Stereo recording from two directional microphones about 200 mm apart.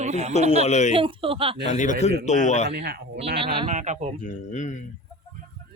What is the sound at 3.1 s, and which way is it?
Speech, 30° right (ahead or behind).